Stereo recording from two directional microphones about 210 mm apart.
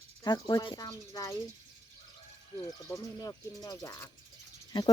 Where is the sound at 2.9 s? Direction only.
15° left (ahead or behind).